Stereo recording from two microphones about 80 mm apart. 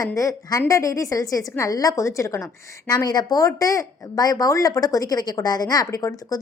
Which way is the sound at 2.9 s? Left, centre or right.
Left.